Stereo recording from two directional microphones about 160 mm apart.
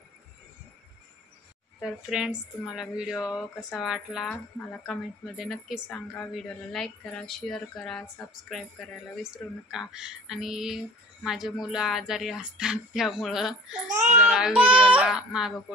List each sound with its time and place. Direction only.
1.8 s a woman's voice: 5° right (ahead or behind)
13.8 s a child's voice: 50° right (ahead or behind)
14.1 s a woman's voice: 5° right (ahead or behind)